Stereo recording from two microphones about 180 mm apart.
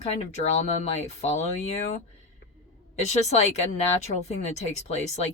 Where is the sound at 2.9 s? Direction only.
40° left (ahead or behind).